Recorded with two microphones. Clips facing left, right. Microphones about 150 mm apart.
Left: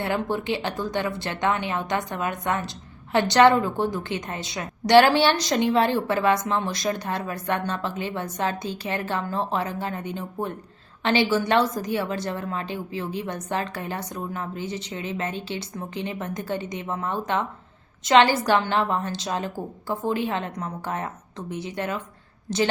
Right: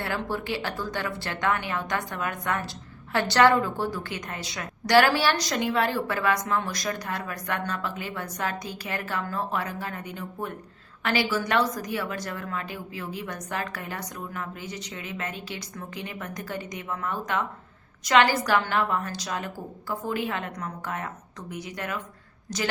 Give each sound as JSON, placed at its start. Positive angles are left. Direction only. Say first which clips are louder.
{"t": 0.0, "sound": "a woman's voice", "louder": "left 4 dB", "side_deg": 20}